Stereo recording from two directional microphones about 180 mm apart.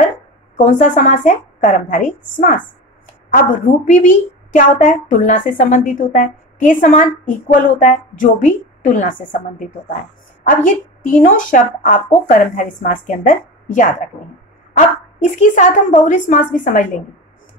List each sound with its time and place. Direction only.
0.6 s a woman's voice: 45° left (ahead or behind)
15.3 s a woman's voice: 45° left (ahead or behind)